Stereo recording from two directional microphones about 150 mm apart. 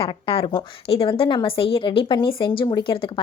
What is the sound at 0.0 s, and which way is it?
Speech, 40° left (ahead or behind).